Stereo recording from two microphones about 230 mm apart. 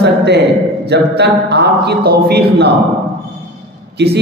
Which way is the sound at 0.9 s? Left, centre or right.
Right.